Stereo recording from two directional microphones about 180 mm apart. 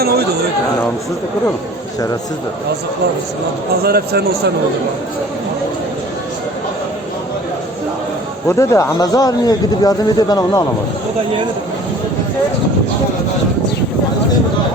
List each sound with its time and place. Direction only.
0.0 s speech: 60° right (ahead or behind)
3.8 s a man's voice: 60° right (ahead or behind)
8.4 s speech: 15° left (ahead or behind)